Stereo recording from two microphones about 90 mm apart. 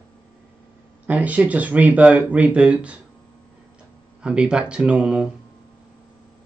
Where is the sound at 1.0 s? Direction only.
15° right (ahead or behind).